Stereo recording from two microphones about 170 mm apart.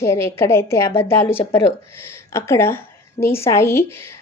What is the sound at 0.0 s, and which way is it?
A woman's voice, 15° left (ahead or behind).